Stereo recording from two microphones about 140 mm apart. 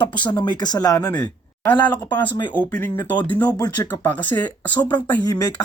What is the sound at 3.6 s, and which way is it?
Speech, 25° left (ahead or behind).